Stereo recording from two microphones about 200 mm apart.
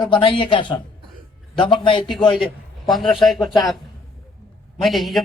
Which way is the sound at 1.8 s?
25° left (ahead or behind).